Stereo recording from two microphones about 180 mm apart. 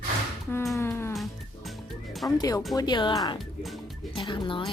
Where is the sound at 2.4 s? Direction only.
20° left (ahead or behind).